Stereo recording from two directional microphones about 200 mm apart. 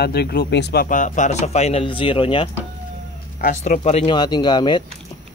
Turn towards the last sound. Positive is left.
turn(degrees=20)  # may be behind; listen again after turning